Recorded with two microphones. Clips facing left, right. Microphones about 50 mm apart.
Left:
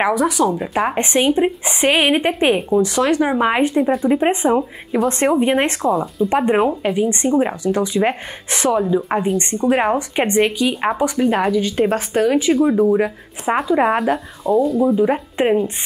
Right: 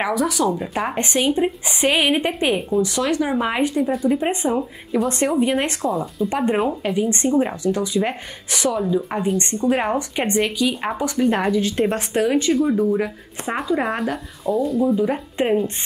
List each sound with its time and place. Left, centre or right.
0.0 s a woman's voice: left
5.9 s speech: centre
6.2 s a woman's voice: centre
7.6 s a woman's voice: left
11.2 s speech: centre
12.6 s a woman's voice: left
13.8 s speech: centre
15.0 s speech: left